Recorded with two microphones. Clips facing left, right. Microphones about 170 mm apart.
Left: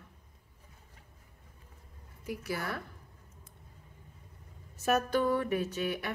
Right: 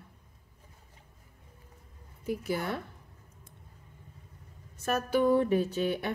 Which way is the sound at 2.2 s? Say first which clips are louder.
Right 5 dB; 25° right (ahead or behind).